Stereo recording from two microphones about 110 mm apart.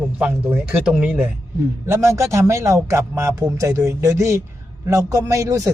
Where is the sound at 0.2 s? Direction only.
15° right (ahead or behind).